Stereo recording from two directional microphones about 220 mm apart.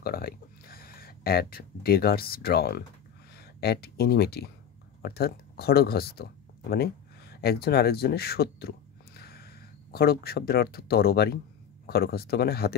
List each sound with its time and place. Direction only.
0.0 s speech: 40° left (ahead or behind)